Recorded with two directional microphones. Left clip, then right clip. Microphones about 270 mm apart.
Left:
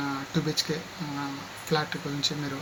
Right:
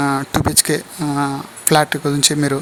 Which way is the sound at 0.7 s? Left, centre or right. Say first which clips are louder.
Right 13 dB; right.